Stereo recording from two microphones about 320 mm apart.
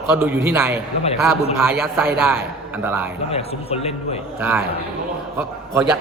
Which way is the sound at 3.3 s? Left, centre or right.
Centre.